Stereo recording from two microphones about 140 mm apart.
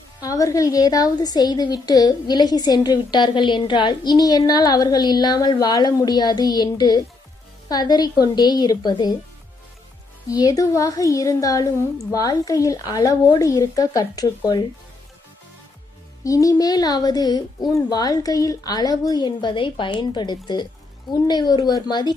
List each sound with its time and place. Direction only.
0.2 s a woman's voice: 25° left (ahead or behind)
10.2 s a woman's voice: 25° left (ahead or behind)
16.2 s a woman's voice: 25° left (ahead or behind)